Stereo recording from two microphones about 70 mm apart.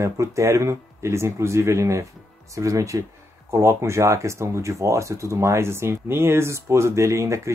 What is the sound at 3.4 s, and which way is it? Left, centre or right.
Speech, right.